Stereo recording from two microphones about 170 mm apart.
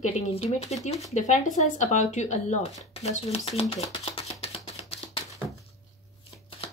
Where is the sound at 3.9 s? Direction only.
35° left (ahead or behind).